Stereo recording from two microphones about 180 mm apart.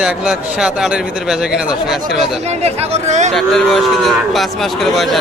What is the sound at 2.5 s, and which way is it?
Speech, 35° right (ahead or behind).